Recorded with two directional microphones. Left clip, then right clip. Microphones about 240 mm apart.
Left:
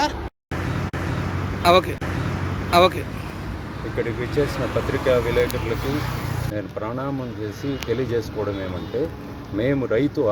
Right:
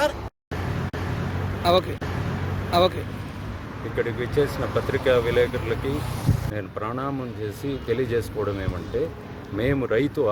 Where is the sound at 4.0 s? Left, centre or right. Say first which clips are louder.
Even; centre.